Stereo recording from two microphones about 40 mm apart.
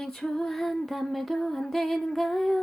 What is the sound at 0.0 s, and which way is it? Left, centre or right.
Music, centre.